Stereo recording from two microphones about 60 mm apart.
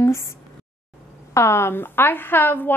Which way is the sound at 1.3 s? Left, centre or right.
Left.